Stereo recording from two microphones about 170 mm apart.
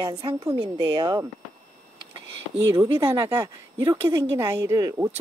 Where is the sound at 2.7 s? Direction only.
15° right (ahead or behind).